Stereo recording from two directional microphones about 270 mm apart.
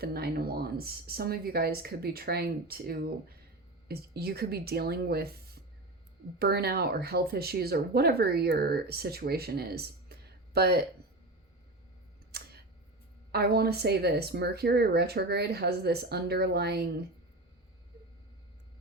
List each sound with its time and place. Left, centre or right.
0.0 s speech: right
12.3 s a sound: right
13.3 s speech: right